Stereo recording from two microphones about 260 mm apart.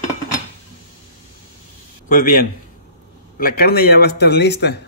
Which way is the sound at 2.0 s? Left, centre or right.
Left.